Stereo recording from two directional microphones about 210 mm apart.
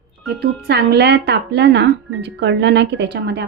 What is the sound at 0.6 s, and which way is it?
Speech, 55° right (ahead or behind).